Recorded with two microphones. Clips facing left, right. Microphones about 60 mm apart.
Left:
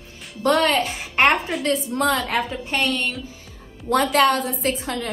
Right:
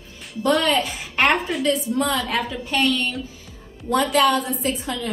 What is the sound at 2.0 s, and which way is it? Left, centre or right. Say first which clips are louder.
Speech: left 1 dB; left.